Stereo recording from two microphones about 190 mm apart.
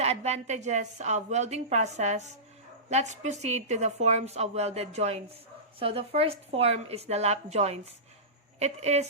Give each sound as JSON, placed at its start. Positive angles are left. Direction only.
{"t": 0.0, "sound": "a woman's voice", "side_deg": -35}